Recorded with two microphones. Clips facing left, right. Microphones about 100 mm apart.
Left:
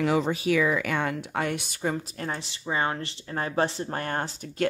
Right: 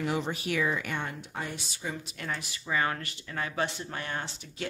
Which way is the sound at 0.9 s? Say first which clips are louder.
Left 8 dB; 90° left.